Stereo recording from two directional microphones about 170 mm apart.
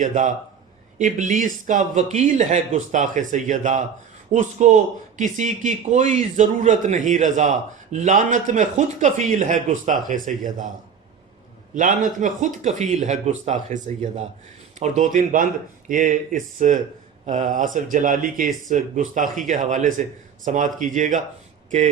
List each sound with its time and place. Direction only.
0.0 s speech: 50° right (ahead or behind)
11.7 s speech: 50° right (ahead or behind)